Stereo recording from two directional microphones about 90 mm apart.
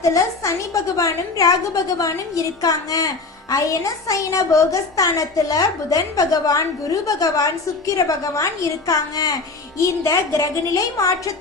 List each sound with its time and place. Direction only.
0.0 s a woman's voice: 35° left (ahead or behind)